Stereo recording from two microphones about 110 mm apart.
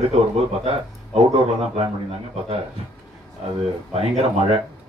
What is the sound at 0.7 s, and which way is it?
Speech, 65° right (ahead or behind).